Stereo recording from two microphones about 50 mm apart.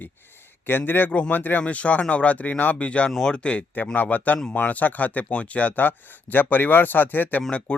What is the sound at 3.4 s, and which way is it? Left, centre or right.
Speech, left.